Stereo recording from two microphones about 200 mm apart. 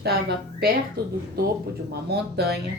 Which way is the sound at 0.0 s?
55° right (ahead or behind).